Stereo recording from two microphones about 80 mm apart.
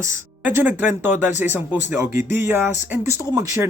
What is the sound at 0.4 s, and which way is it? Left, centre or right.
Speech, right.